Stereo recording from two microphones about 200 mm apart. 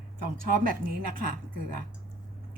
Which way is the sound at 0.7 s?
45° right (ahead or behind).